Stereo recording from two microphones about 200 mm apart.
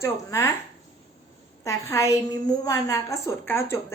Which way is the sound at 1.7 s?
15° left (ahead or behind).